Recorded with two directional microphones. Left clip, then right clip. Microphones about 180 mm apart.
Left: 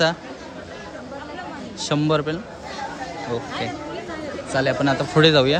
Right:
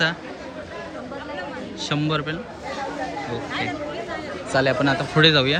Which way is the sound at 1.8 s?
25° left (ahead or behind).